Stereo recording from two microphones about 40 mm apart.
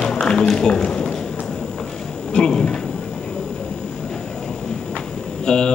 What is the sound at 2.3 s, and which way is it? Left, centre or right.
Speech, centre.